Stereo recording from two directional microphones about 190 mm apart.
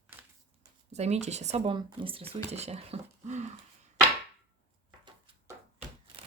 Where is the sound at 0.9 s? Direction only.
35° right (ahead or behind).